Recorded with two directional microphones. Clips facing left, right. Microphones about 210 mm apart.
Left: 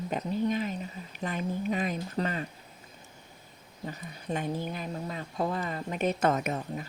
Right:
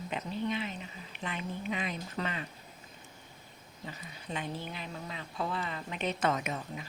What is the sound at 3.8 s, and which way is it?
Speech, 45° left (ahead or behind).